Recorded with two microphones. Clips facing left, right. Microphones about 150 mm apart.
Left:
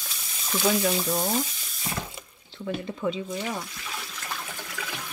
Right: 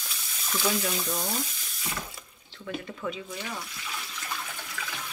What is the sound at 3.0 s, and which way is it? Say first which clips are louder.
Speech: left 6 dB; 25° left (ahead or behind).